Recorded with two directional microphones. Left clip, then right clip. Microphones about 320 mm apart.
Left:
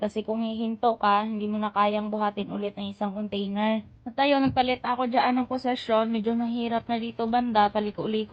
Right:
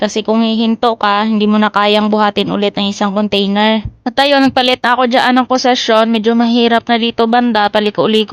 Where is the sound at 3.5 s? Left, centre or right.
Centre.